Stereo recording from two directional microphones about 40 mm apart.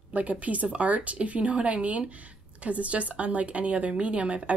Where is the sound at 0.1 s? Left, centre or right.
Right.